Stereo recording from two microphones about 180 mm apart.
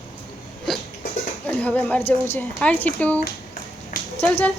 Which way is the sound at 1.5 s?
5° left (ahead or behind).